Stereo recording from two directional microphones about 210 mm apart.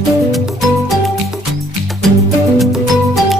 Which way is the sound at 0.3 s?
Centre (ahead or behind).